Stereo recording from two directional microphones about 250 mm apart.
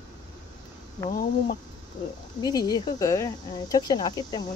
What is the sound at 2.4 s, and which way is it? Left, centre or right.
Speech, centre.